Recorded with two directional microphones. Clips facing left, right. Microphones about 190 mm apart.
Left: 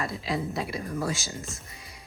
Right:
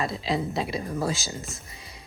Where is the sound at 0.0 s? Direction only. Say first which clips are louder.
Right 3 dB; 25° right (ahead or behind).